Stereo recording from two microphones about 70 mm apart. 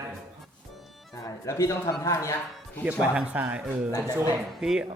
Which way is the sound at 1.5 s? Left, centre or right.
Left.